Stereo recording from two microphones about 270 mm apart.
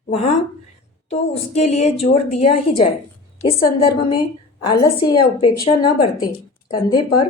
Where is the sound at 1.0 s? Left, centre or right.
Left.